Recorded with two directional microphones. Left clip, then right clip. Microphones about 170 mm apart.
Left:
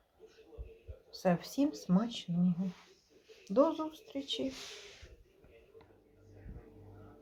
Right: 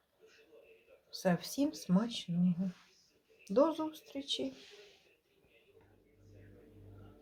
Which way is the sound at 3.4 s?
5° left (ahead or behind).